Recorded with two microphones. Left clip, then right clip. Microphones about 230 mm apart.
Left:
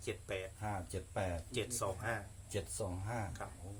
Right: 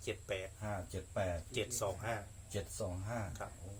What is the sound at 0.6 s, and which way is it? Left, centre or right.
Speech, left.